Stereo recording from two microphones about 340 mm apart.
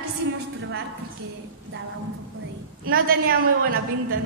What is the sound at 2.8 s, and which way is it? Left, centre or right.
Speech, right.